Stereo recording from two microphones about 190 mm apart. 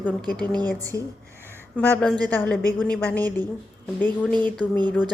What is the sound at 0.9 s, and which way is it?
Speech, 15° left (ahead or behind).